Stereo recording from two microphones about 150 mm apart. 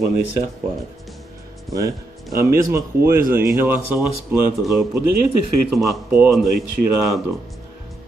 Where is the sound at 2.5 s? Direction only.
15° right (ahead or behind).